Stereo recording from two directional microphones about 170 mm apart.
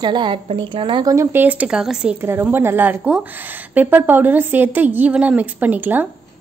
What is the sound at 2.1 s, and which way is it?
A woman's voice, 15° right (ahead or behind).